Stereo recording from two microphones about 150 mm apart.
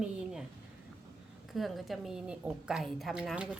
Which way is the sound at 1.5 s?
Centre (ahead or behind).